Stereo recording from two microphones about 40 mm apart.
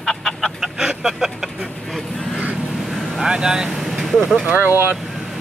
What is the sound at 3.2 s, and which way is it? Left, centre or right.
Speech, centre.